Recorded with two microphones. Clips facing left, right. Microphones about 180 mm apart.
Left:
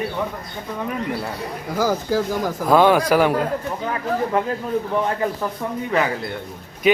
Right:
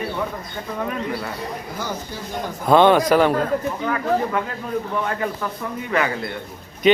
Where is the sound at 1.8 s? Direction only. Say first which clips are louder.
Left 13 dB; 90° left.